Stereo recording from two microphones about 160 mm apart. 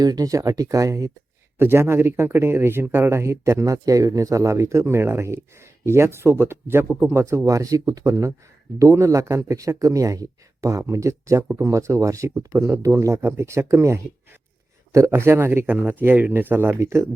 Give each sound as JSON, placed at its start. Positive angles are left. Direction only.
{"t": 0.0, "sound": "speech", "side_deg": -25}